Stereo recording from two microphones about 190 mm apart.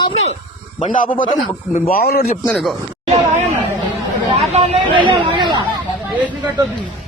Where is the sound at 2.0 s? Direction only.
55° left (ahead or behind).